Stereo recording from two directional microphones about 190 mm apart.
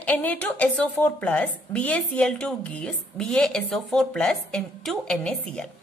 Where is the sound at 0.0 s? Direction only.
10° left (ahead or behind).